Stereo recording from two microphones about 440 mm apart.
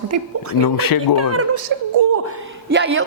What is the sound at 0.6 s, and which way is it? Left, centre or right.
Speech, left.